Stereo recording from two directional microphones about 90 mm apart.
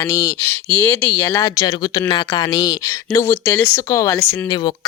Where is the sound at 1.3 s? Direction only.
40° left (ahead or behind).